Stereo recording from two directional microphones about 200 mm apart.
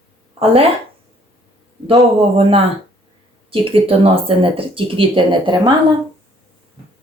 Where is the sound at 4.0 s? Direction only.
25° right (ahead or behind).